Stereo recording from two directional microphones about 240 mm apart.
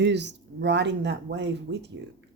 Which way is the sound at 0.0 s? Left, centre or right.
Right.